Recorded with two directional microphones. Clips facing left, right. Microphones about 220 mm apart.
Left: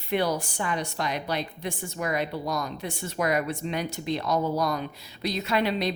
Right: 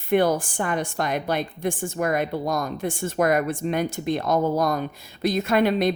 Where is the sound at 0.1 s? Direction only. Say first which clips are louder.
Right 6 dB; 50° right (ahead or behind).